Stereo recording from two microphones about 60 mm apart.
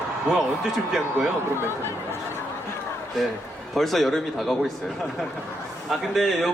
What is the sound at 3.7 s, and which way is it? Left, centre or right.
A man's voice, centre.